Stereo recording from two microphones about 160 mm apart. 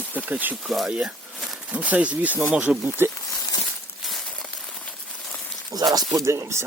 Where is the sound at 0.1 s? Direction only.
10° right (ahead or behind).